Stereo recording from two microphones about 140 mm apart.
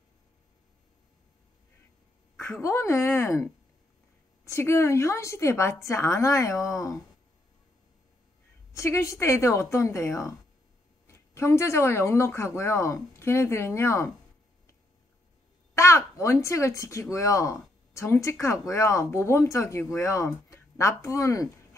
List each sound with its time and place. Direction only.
2.6 s speech: 20° left (ahead or behind)
4.5 s speech: 20° left (ahead or behind)
8.7 s speech: 20° left (ahead or behind)
15.7 s speech: 20° left (ahead or behind)